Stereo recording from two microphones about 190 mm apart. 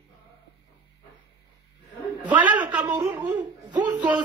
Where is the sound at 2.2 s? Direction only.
10° right (ahead or behind).